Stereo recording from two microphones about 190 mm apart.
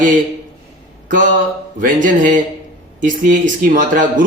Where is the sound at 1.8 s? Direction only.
45° right (ahead or behind).